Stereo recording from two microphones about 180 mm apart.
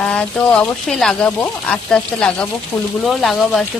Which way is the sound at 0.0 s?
5° left (ahead or behind).